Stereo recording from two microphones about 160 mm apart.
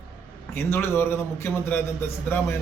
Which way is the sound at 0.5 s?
15° left (ahead or behind).